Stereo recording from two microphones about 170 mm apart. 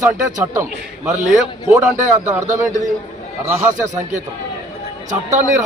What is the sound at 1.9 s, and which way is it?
Speech, 45° right (ahead or behind).